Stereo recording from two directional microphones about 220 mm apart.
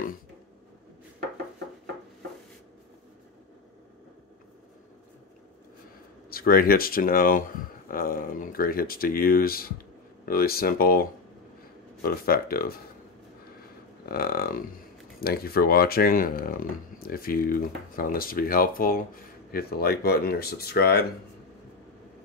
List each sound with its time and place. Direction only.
6.3 s speech: 40° left (ahead or behind)
14.0 s speech: 45° left (ahead or behind)